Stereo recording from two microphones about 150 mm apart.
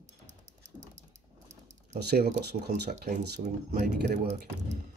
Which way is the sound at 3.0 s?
70° right (ahead or behind).